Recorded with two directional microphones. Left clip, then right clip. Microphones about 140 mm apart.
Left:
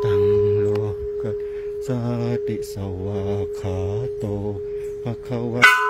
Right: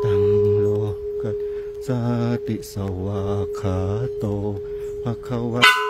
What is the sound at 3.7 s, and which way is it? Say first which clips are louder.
Mantra: right 1 dB; 40° right (ahead or behind).